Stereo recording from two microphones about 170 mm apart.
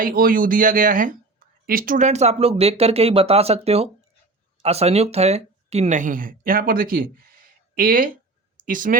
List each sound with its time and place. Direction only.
0.0 s speech: 55° right (ahead or behind)